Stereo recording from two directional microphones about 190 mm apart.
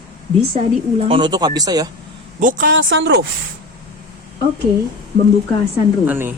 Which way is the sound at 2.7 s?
70° right (ahead or behind).